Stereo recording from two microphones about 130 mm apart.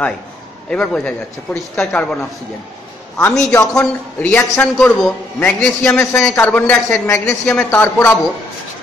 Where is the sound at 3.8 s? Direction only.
10° left (ahead or behind).